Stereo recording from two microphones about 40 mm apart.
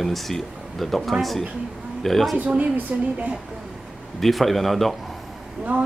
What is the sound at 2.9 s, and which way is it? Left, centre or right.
Speech, right.